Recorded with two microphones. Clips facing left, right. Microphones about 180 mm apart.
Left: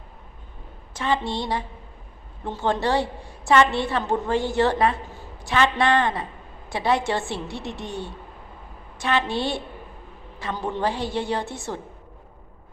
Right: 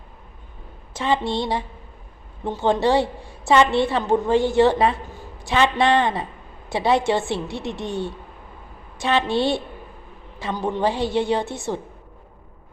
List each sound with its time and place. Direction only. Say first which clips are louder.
0.9 s a woman's voice: right 3 dB; 20° right (ahead or behind)
10.5 s a woman's voice: right 3 dB; 15° right (ahead or behind)